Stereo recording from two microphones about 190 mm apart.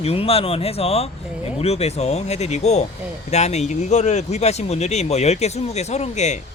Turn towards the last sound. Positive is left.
turn(degrees=35)  # may be behind; listen again after turning